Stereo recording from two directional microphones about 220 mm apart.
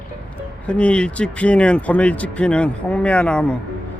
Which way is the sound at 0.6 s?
5° left (ahead or behind).